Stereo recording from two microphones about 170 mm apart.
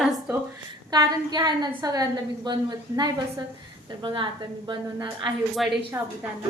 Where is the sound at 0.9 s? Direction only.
25° right (ahead or behind).